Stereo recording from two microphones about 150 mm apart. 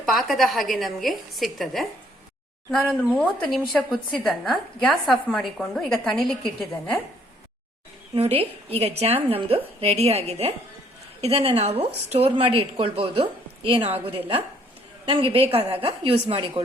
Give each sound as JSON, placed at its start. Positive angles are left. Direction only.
{"t": 0.0, "sound": "a woman's voice", "side_deg": 0}
{"t": 8.1, "sound": "a woman's voice", "side_deg": -40}